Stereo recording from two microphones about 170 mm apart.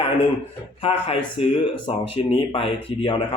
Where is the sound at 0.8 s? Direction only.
35° left (ahead or behind).